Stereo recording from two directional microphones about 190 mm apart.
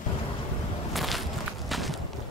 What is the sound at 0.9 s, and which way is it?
Walk, centre (ahead or behind).